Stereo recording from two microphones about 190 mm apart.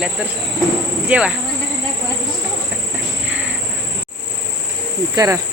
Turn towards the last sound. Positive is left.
turn(degrees=-15)  # may be behind; listen again after turning